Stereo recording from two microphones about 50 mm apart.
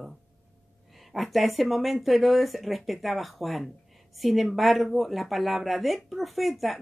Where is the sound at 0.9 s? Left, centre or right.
Centre.